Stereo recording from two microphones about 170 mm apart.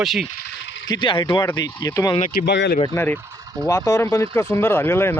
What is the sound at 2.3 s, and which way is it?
Speech, 75° left (ahead or behind).